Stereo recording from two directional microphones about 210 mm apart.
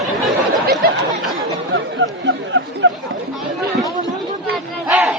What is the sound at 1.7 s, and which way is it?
Speech, 60° right (ahead or behind).